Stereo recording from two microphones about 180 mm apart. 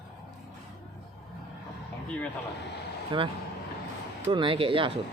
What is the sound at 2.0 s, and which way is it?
Vehicle, 5° left (ahead or behind).